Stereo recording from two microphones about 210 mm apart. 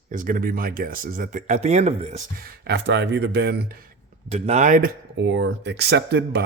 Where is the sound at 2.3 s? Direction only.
45° right (ahead or behind).